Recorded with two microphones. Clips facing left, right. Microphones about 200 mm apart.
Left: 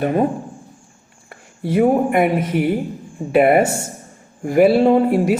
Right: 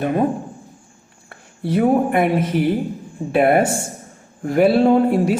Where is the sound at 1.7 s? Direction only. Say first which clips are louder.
Left 1 dB; 10° left (ahead or behind).